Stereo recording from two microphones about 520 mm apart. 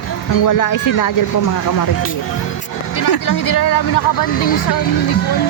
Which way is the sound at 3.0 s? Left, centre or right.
Left.